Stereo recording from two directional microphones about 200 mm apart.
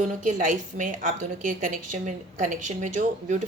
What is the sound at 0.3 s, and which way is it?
A woman's voice, 40° right (ahead or behind).